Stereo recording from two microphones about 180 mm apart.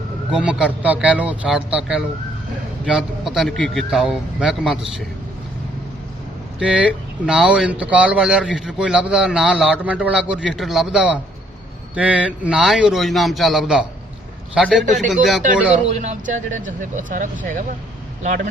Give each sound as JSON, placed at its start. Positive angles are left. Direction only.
{"t": 0.3, "sound": "a man's voice", "side_deg": -5}
{"t": 6.6, "sound": "a man's voice", "side_deg": -5}
{"t": 15.9, "sound": "speech", "side_deg": -40}